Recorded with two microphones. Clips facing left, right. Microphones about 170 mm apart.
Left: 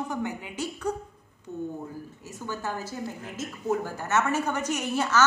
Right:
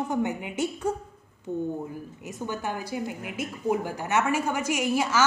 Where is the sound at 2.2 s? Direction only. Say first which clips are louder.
Right 2 dB; 20° right (ahead or behind).